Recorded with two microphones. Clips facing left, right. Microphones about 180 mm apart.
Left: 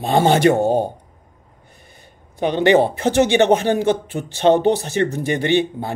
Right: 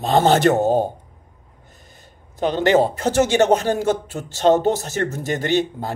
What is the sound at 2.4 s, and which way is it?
Speech, 15° left (ahead or behind).